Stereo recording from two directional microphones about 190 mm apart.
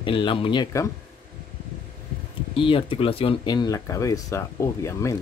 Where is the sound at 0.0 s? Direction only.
25° left (ahead or behind).